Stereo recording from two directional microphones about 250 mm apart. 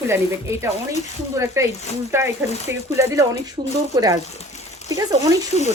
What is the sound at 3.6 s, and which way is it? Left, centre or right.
Speech, right.